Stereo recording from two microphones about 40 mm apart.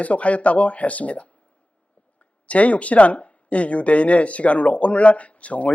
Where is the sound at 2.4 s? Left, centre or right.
Left.